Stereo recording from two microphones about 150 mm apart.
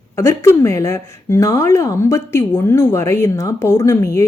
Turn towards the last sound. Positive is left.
turn(degrees=20)  # may be behind; listen again after turning